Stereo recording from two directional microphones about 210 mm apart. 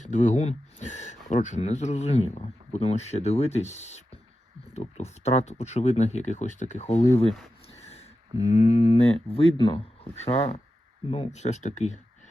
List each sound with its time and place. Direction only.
0.0 s speech: 35° left (ahead or behind)
8.0 s a sound: 30° left (ahead or behind)
9.2 s speech: 25° left (ahead or behind)